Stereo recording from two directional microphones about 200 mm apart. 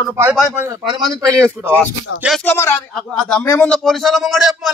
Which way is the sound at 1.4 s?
10° right (ahead or behind).